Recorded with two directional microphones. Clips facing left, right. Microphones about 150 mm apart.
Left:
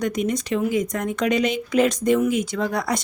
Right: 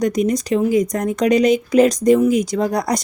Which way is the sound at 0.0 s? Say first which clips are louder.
Right 5 dB; 35° right (ahead or behind).